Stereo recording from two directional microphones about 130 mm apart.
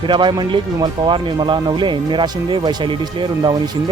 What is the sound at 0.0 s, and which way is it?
Speech, 35° right (ahead or behind).